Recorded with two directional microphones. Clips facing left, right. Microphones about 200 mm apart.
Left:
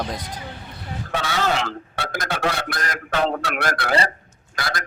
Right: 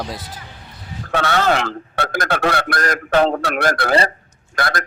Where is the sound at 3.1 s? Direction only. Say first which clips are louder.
Right 6 dB; 50° right (ahead or behind).